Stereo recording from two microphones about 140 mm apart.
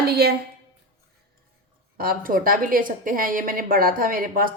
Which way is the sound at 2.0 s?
90° right.